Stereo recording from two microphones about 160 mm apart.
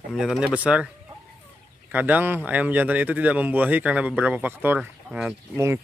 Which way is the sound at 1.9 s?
10° right (ahead or behind).